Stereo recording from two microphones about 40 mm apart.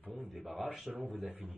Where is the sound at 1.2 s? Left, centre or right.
Right.